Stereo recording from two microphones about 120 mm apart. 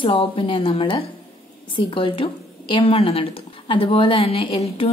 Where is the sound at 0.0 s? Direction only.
45° left (ahead or behind).